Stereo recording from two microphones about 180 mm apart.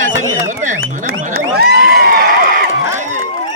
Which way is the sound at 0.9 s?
45° right (ahead or behind).